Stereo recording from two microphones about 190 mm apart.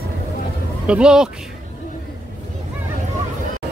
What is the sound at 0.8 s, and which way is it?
Speech, 5° right (ahead or behind).